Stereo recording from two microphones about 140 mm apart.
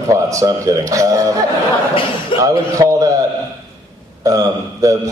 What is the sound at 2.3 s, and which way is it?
Speech, 40° left (ahead or behind).